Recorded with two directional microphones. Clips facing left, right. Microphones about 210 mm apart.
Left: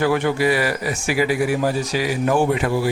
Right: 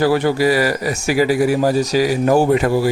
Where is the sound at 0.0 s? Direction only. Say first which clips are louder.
Right 3 dB; 35° right (ahead or behind).